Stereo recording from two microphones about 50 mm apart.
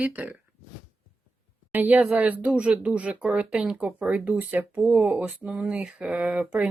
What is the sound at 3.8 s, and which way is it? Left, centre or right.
Speech, right.